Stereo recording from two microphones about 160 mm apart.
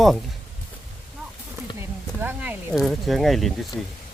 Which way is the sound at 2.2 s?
10° right (ahead or behind).